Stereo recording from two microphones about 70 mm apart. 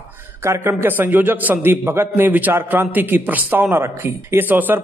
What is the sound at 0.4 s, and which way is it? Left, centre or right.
A man's voice, right.